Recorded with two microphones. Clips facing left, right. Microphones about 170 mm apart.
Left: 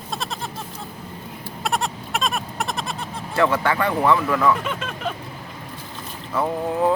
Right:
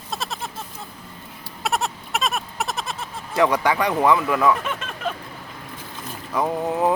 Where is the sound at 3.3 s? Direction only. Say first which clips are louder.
Right 1 dB; 15° right (ahead or behind).